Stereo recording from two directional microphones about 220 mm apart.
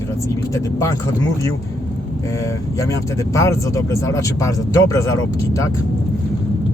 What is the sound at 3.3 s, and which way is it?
Speech, 15° left (ahead or behind).